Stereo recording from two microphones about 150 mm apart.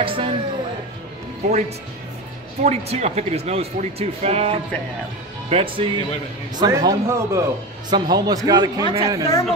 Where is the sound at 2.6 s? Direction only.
50° right (ahead or behind).